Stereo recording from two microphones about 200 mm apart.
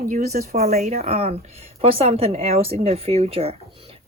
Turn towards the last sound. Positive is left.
turn(degrees=-30)  # may be behind; listen again after turning